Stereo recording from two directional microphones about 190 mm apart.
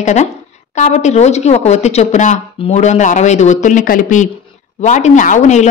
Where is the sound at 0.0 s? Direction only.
40° left (ahead or behind).